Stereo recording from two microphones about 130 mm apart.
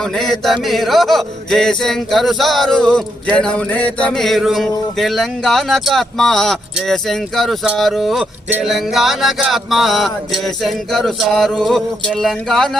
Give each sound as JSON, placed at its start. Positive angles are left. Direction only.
{"t": 0.2, "sound": "music", "side_deg": 0}
{"t": 3.3, "sound": "a sound", "side_deg": 10}
{"t": 4.0, "sound": "music", "side_deg": 0}